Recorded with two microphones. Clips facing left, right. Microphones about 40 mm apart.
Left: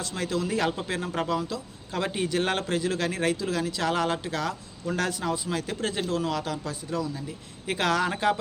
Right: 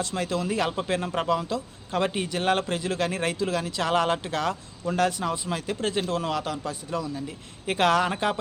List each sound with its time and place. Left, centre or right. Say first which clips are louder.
0.1 s a man's voice: right 1 dB; centre
4.9 s a man's voice: right 3 dB; centre
6.1 s speech: even; right
6.3 s a man's voice: right 1 dB; right
8.1 s speech: left 1 dB; centre